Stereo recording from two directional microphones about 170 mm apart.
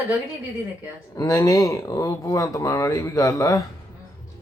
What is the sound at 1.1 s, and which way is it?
Speech, 20° left (ahead or behind).